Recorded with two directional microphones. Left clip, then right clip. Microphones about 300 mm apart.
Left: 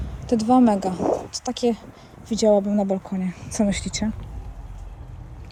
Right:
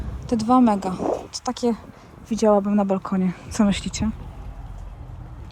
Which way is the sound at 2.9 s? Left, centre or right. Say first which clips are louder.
Right 3 dB; right.